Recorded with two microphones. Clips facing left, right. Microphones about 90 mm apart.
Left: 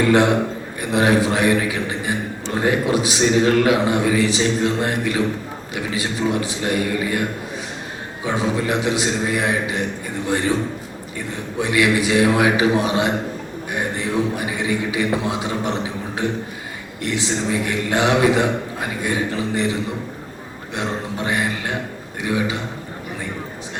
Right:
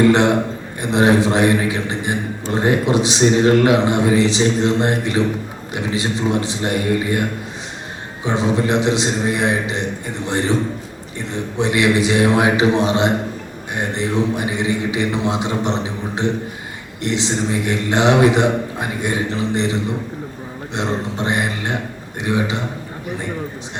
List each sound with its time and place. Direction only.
0.1 s a man's voice: 25° right (ahead or behind)
8.2 s a man's voice: 25° right (ahead or behind)
11.5 s a man's voice: 25° right (ahead or behind)
20.7 s a man's voice: 25° right (ahead or behind)